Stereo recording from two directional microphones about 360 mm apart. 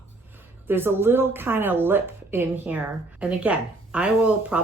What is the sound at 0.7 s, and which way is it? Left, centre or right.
A woman's voice, centre.